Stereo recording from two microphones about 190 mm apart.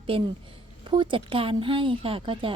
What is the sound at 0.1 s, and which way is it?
A woman's voice, 30° right (ahead or behind).